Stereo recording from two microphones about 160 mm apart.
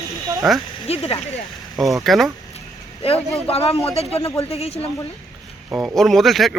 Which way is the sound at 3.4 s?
40° left (ahead or behind).